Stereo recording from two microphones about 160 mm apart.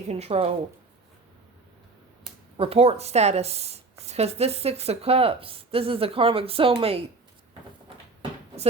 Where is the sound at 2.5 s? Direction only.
35° right (ahead or behind).